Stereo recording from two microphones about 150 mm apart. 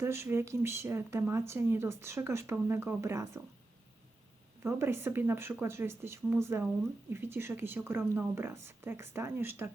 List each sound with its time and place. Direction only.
0.0 s speech: 15° right (ahead or behind)
4.6 s speech: 15° right (ahead or behind)